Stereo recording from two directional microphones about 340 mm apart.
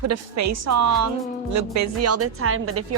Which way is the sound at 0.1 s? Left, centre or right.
Right.